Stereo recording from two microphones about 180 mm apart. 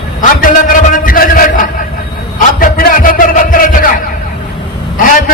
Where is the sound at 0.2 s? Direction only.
50° left (ahead or behind).